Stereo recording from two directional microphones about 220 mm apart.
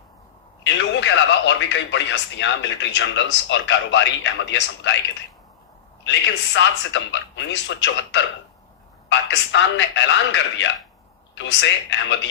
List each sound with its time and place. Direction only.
0.6 s speech: 55° left (ahead or behind)
6.1 s speech: 55° left (ahead or behind)